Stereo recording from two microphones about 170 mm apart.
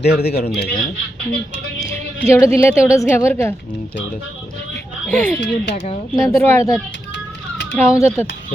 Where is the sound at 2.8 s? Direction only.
15° left (ahead or behind).